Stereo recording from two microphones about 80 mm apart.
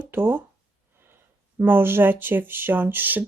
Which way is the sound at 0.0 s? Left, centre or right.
Right.